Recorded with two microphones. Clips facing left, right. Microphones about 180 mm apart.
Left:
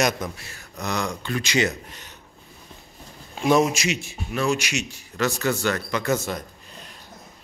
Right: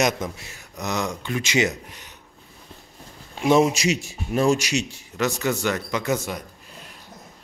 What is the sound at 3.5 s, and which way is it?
Speech, 25° right (ahead or behind).